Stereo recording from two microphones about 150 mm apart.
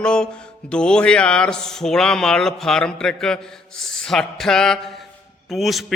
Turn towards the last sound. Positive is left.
turn(degrees=0)  # may be behind; listen again after turning